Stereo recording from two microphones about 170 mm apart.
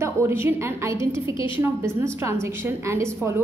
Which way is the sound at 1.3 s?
30° left (ahead or behind).